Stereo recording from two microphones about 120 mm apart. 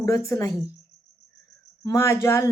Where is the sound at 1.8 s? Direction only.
20° left (ahead or behind).